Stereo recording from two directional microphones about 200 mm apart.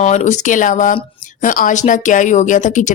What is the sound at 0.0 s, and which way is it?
Speech, 35° left (ahead or behind).